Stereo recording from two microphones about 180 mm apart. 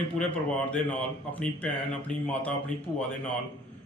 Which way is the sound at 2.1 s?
5° left (ahead or behind).